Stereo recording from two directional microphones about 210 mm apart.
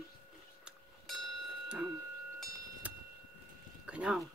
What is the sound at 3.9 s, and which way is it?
Speech, 5° right (ahead or behind).